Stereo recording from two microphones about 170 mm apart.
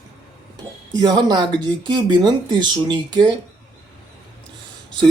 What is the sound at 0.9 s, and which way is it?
Speech, 25° right (ahead or behind).